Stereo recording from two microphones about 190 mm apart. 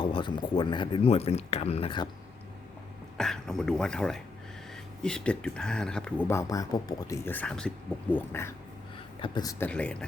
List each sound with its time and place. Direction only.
0.0 s speech: 25° left (ahead or behind)
3.2 s speech: centre (ahead or behind); by 9.6 s 20° left (ahead or behind)
9.6 s speech: 5° left (ahead or behind)